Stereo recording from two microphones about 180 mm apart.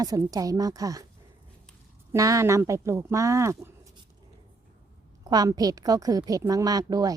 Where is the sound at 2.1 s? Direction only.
20° right (ahead or behind).